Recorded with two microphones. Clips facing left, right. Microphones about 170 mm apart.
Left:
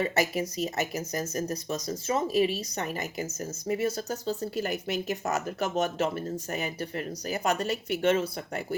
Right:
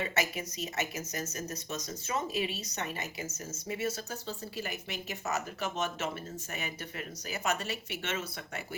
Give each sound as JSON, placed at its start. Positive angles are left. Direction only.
{"t": 0.0, "sound": "speech", "side_deg": 35}